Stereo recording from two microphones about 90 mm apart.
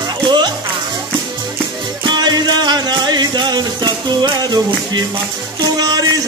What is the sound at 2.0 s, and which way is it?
Music, 55° right (ahead or behind).